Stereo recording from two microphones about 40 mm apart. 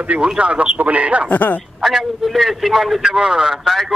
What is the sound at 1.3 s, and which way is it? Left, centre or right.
Speech, left.